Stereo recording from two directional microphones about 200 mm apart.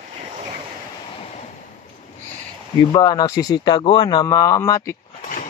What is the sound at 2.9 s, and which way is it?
Speech, 20° left (ahead or behind).